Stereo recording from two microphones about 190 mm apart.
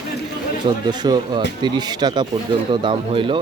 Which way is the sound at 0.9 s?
20° right (ahead or behind).